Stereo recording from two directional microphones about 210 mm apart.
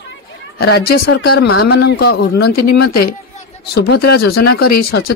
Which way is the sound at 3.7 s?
50° left (ahead or behind).